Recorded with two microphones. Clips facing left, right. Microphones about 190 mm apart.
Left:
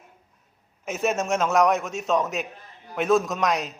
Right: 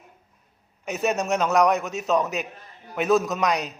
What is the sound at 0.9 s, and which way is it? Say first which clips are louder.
A man's voice: even; centre (ahead or behind).